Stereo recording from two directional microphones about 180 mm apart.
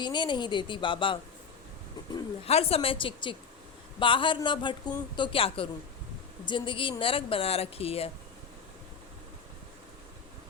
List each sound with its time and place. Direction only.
0.0 s speech: 25° left (ahead or behind)